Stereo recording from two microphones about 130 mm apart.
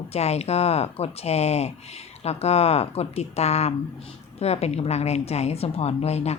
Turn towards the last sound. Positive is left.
turn(degrees=55)  # may be behind; listen again after turning